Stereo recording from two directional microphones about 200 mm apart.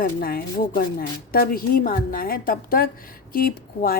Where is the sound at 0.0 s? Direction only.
50° left (ahead or behind).